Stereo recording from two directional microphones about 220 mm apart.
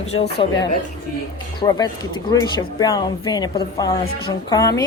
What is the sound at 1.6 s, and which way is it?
A woman's voice, 20° left (ahead or behind).